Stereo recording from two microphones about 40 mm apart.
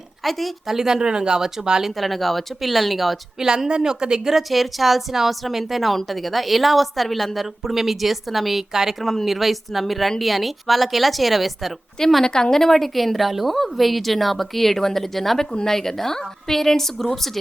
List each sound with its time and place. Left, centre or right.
0.3 s a woman's voice: centre
0.7 s speech: centre
1.8 s a woman's voice: centre
3.7 s speech: centre
4.4 s a woman's voice: centre
9.0 s a woman's voice: centre
11.9 s a woman's voice: centre